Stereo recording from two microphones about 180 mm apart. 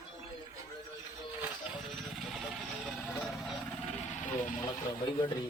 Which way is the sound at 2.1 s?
Centre (ahead or behind).